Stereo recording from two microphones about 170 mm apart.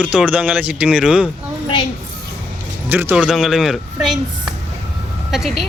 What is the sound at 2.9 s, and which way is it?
A woman's voice, 10° right (ahead or behind).